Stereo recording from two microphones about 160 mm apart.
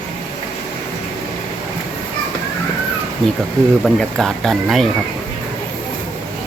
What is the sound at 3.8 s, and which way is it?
Speech, centre (ahead or behind).